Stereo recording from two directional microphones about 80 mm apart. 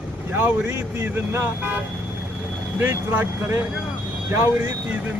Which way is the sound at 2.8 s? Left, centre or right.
Right.